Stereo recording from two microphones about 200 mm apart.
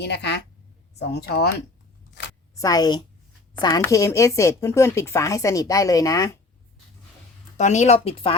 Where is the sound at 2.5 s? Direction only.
15° left (ahead or behind).